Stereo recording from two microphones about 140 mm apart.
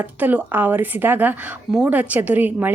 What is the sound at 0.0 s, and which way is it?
A woman's voice, 15° right (ahead or behind).